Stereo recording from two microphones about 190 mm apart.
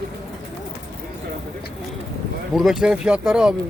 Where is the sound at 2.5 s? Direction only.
Centre (ahead or behind).